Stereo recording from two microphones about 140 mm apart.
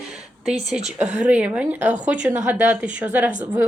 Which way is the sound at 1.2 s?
10° right (ahead or behind).